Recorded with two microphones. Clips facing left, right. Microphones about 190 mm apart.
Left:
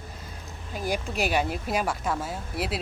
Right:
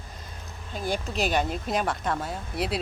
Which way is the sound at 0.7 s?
10° left (ahead or behind).